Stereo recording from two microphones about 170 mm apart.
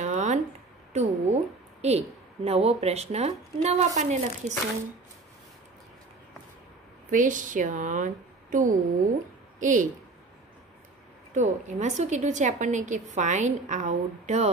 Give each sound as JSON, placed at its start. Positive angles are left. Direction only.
{"t": 0.0, "sound": "a sound", "side_deg": -45}
{"t": 0.9, "sound": "a woman's voice", "side_deg": -40}
{"t": 7.1, "sound": "a woman's voice", "side_deg": -50}
{"t": 11.3, "sound": "a woman's voice", "side_deg": -45}